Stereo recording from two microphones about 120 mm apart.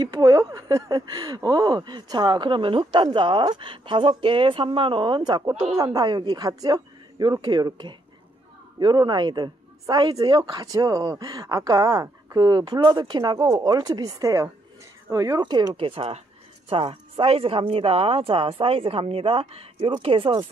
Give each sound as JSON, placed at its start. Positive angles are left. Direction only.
{"t": 0.0, "sound": "a woman's voice", "side_deg": -30}
{"t": 5.5, "sound": "speech", "side_deg": -5}
{"t": 5.8, "sound": "a woman's voice", "side_deg": -35}
{"t": 15.4, "sound": "speech", "side_deg": -35}